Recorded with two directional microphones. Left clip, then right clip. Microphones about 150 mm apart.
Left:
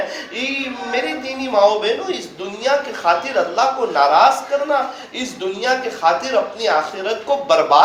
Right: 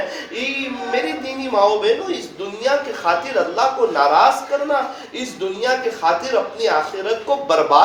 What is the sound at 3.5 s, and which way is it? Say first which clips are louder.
A woman's voice: even; 40° right (ahead or behind).